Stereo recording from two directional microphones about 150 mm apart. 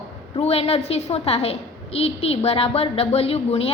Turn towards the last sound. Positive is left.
turn(degrees=40)  # may be behind; listen again after turning